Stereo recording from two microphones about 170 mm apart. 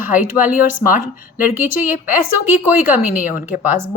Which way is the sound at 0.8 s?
55° left (ahead or behind).